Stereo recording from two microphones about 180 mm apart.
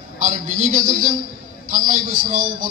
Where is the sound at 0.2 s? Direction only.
45° right (ahead or behind).